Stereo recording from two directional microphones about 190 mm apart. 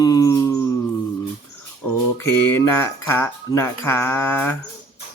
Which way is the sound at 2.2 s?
15° left (ahead or behind).